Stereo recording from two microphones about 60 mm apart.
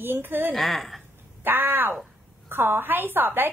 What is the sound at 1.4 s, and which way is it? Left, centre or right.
A woman's voice, right.